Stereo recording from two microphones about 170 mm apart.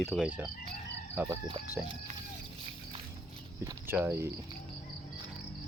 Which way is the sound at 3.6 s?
15° right (ahead or behind).